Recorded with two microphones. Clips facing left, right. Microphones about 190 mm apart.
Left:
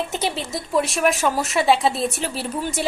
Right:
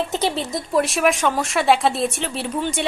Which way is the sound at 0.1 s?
25° right (ahead or behind).